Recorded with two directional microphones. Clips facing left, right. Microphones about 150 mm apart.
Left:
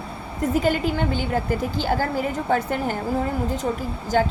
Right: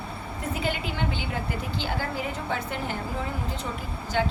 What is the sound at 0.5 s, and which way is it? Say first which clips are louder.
A woman's voice: left 9 dB; 45° left (ahead or behind).